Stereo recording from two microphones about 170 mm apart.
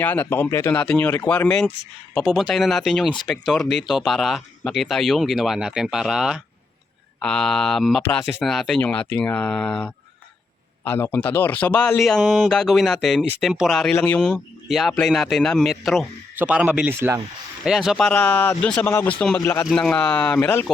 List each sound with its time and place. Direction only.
0.0 s speech: 10° left (ahead or behind)
19.6 s speech: 5° left (ahead or behind)